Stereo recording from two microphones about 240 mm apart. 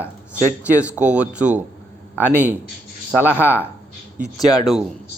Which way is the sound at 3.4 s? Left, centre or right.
Centre.